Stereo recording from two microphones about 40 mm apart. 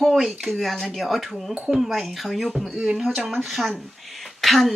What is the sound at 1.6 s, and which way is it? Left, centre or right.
Speech, centre.